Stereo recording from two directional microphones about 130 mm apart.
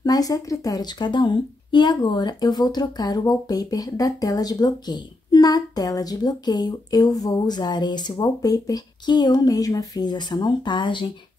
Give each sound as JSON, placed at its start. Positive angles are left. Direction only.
{"t": 0.0, "sound": "speech", "side_deg": 30}